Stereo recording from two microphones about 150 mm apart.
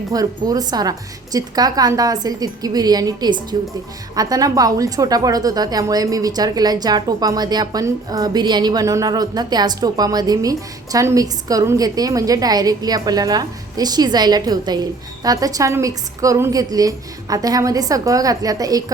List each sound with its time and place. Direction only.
0.1 s a woman's voice: 25° right (ahead or behind)